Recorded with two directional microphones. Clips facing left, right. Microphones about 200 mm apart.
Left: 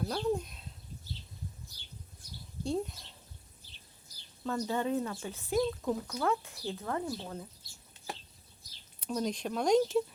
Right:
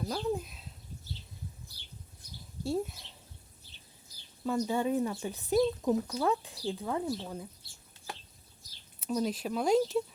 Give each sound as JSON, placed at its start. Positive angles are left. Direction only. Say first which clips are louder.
{"t": 0.0, "sound": "speech", "louder": "left 1 dB", "side_deg": 0}
{"t": 2.6, "sound": "a sound", "louder": "right 1 dB", "side_deg": -5}
{"t": 4.4, "sound": "speech", "louder": "right 2 dB", "side_deg": -10}
{"t": 9.0, "sound": "speech", "louder": "right 2 dB", "side_deg": -5}